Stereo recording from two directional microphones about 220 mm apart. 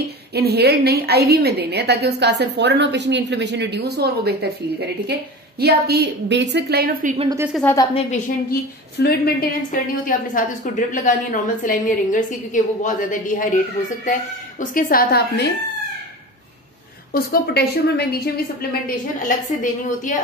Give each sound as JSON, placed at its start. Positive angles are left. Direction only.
{"t": 0.3, "sound": "a woman's voice", "side_deg": -45}
{"t": 7.2, "sound": "a woman's voice", "side_deg": -15}
{"t": 7.7, "sound": "a woman's voice", "side_deg": 15}
{"t": 8.1, "sound": "a woman's voice", "side_deg": 45}
{"t": 14.6, "sound": "a woman's voice", "side_deg": 40}
{"t": 17.1, "sound": "a woman's voice", "side_deg": 45}